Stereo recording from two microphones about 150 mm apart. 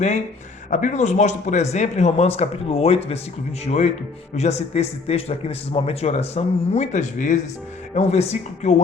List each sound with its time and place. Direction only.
0.7 s a man's voice: 55° left (ahead or behind)
7.9 s a man's voice: 45° left (ahead or behind)